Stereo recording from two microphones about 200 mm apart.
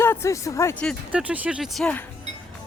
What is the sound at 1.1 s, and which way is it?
Speech, 5° right (ahead or behind).